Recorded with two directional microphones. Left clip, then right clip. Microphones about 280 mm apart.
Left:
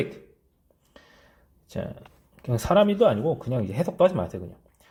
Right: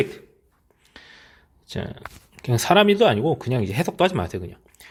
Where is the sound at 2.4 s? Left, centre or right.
Right.